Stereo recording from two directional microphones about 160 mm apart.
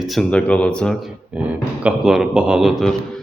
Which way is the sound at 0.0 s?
Centre (ahead or behind).